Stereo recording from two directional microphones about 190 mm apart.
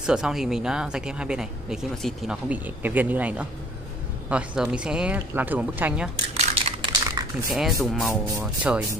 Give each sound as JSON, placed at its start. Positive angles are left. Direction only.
{"t": 0.0, "sound": "speech", "side_deg": -5}
{"t": 6.3, "sound": "a sound", "side_deg": -30}
{"t": 7.5, "sound": "speech", "side_deg": 0}